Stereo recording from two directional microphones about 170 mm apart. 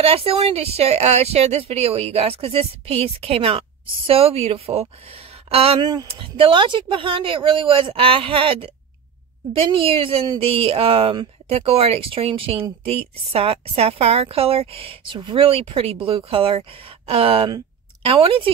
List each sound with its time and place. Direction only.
0.0 s a woman's voice: 35° right (ahead or behind)